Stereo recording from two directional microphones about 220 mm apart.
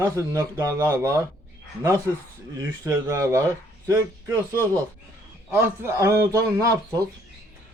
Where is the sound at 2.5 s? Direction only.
15° right (ahead or behind).